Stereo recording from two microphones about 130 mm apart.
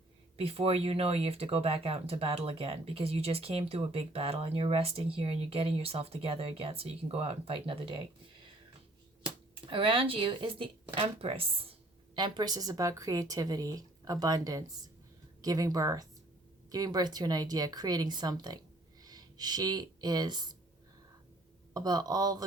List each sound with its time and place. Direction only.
0.3 s speech: 50° right (ahead or behind)
9.2 s speech: 40° right (ahead or behind)
12.1 s a woman's voice: 35° right (ahead or behind)
21.7 s speech: 30° right (ahead or behind)